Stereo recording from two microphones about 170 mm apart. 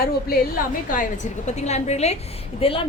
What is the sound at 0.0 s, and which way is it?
A woman's voice, 60° left (ahead or behind).